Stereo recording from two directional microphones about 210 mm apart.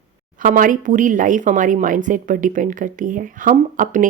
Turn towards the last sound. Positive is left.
turn(degrees=-35)  # may be behind; listen again after turning